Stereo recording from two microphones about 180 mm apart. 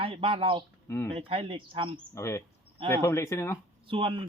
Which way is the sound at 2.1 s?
15° left (ahead or behind).